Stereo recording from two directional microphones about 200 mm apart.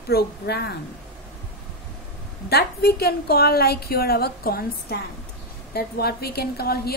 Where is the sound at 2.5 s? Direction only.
50° left (ahead or behind).